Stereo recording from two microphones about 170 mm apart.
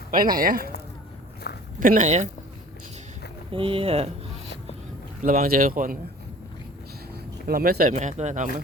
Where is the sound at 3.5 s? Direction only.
30° right (ahead or behind).